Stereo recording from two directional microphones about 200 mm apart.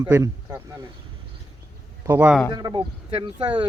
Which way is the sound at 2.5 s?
20° right (ahead or behind).